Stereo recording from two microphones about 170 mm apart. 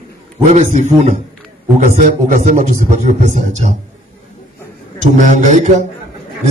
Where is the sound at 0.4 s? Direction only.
45° right (ahead or behind).